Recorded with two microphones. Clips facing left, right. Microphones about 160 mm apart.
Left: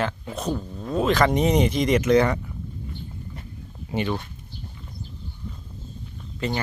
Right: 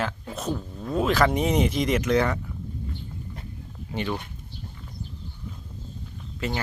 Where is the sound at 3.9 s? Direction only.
Centre (ahead or behind).